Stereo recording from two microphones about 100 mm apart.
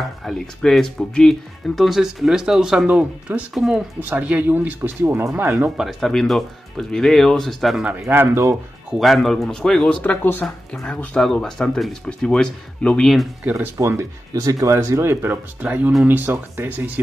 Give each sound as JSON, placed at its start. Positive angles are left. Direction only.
{"t": 0.2, "sound": "speech", "side_deg": 0}
{"t": 3.5, "sound": "speech", "side_deg": 0}
{"t": 4.1, "sound": "speech", "side_deg": -15}
{"t": 5.8, "sound": "speech", "side_deg": 0}
{"t": 8.0, "sound": "speech", "side_deg": -25}
{"t": 8.9, "sound": "speech", "side_deg": 0}
{"t": 10.0, "sound": "speech", "side_deg": 20}
{"t": 10.4, "sound": "speech", "side_deg": 5}
{"t": 13.5, "sound": "speech", "side_deg": -30}